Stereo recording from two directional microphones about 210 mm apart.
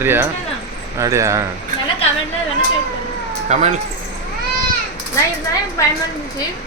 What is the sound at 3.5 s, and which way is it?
Speech, 35° right (ahead or behind).